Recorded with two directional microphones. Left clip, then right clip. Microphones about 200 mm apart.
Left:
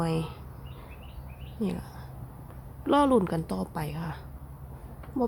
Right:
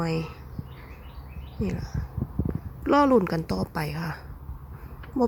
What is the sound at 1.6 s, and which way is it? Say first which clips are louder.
Speech: right 1 dB; 10° right (ahead or behind).